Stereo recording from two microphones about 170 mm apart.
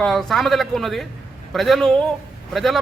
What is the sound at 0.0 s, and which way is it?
A man's voice, centre (ahead or behind).